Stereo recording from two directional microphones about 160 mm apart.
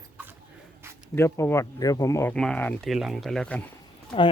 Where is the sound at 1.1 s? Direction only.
15° left (ahead or behind).